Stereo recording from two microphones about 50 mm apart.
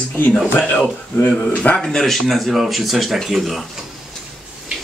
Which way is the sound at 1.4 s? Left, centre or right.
Left.